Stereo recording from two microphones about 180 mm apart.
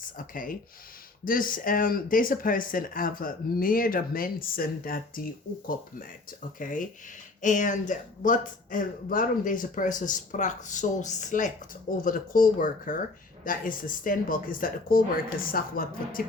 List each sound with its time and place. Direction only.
0.0 s speech: 50° left (ahead or behind)